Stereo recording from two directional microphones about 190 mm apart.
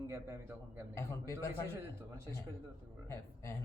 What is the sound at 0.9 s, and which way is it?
Speech, 15° left (ahead or behind).